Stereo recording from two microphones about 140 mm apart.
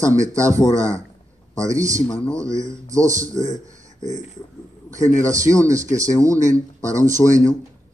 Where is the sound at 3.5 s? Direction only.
25° right (ahead or behind).